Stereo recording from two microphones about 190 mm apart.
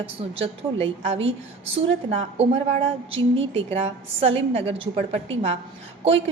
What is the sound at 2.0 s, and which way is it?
A woman's voice, 30° right (ahead or behind).